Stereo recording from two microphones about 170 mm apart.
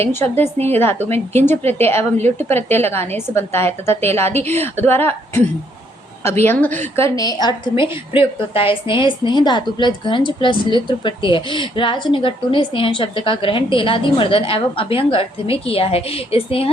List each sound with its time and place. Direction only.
0.2 s a woman's voice: 15° left (ahead or behind)
6.4 s a woman's voice: 10° left (ahead or behind); by 16.7 s 35° left (ahead or behind)